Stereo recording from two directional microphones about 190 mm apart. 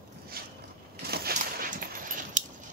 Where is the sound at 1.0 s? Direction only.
55° right (ahead or behind).